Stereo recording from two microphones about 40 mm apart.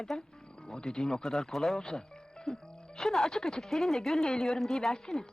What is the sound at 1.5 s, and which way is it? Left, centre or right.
Speech, centre.